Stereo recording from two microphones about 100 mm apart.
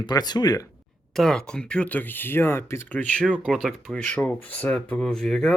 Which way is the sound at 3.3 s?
Centre (ahead or behind).